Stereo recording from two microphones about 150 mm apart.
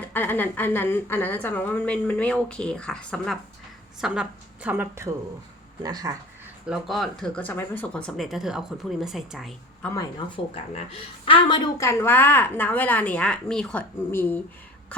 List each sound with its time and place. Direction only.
0.0 s a woman's voice: 15° left (ahead or behind)
4.0 s a woman's voice: 5° right (ahead or behind)
5.8 s speech: 25° right (ahead or behind)
6.7 s speech: centre (ahead or behind)
9.8 s speech: 20° left (ahead or behind)
10.2 s a woman's voice: 35° left (ahead or behind); by 14.4 s 15° left (ahead or behind)